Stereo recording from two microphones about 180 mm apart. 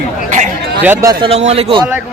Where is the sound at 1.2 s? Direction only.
35° right (ahead or behind).